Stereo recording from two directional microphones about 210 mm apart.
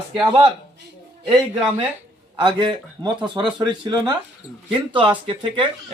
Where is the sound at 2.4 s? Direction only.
25° right (ahead or behind).